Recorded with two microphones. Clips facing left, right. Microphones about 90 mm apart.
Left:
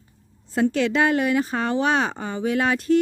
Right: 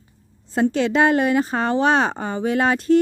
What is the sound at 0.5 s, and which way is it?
Speech, 30° right (ahead or behind).